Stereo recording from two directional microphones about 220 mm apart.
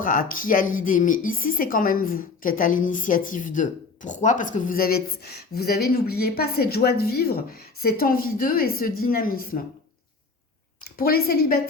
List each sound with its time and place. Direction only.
0.0 s speech: 40° left (ahead or behind)
10.8 s a woman's voice: 40° left (ahead or behind)